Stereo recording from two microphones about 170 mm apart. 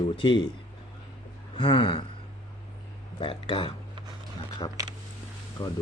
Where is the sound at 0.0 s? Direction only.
30° left (ahead or behind).